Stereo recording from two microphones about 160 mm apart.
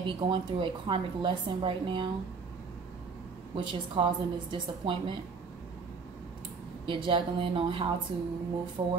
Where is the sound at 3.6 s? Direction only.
30° right (ahead or behind).